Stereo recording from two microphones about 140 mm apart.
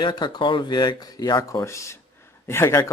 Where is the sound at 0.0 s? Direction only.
35° left (ahead or behind).